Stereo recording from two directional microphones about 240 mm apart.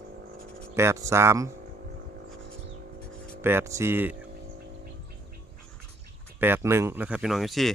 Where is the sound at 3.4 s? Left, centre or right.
Centre.